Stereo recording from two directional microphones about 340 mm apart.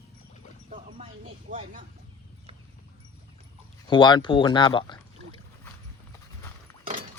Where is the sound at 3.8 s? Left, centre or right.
Centre.